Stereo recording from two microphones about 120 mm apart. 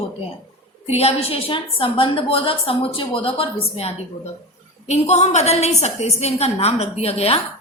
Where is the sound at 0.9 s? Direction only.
60° left (ahead or behind).